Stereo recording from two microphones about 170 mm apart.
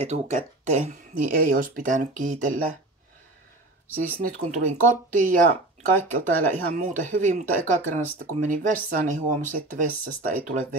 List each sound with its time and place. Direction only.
0.0 s speech: 45° right (ahead or behind)
4.0 s speech: 55° right (ahead or behind)